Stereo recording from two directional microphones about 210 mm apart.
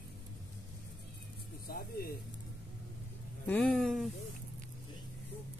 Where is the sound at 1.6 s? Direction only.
45° left (ahead or behind).